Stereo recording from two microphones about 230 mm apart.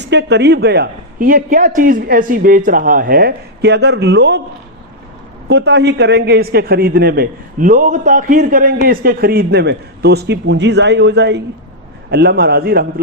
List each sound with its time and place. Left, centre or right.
0.0 s speech: right
5.5 s a man's voice: right